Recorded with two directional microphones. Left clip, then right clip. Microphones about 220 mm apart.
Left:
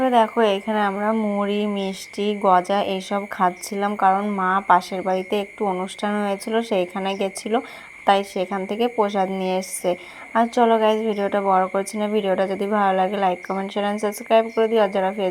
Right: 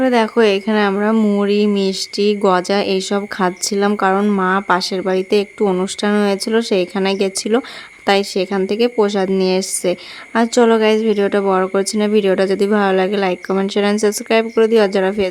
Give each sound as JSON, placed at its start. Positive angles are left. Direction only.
{"t": 0.0, "sound": "a woman's voice", "side_deg": -20}